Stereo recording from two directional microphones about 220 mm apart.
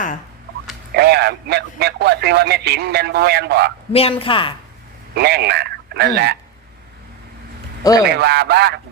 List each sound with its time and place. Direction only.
0.9 s speech: 45° right (ahead or behind)
3.9 s speech: 25° left (ahead or behind)
5.1 s speech: 45° right (ahead or behind)
8.0 s speech: 45° right (ahead or behind)